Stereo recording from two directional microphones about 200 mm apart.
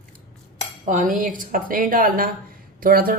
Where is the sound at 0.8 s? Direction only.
40° right (ahead or behind).